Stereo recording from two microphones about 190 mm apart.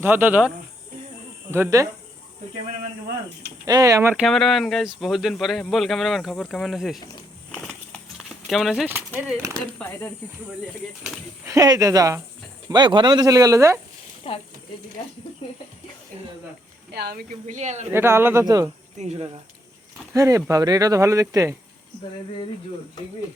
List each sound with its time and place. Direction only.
0.0 s speech: 10° right (ahead or behind)
3.7 s speech: 20° right (ahead or behind)
4.1 s speech: centre (ahead or behind)
7.5 s horse: centre (ahead or behind)
9.6 s speech: 10° left (ahead or behind)
11.4 s speech: 20° right (ahead or behind)
14.3 s speech: 30° left (ahead or behind)
16.9 s speech: 55° right (ahead or behind)
17.4 s speech: 35° right (ahead or behind)
17.9 s speech: 10° right (ahead or behind)
18.9 s speech: 35° right (ahead or behind)
20.1 s speech: 15° right (ahead or behind)